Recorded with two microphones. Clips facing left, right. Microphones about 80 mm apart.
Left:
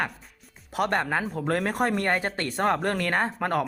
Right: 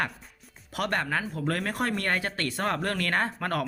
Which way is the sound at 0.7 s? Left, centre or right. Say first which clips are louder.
Left 3 dB; left.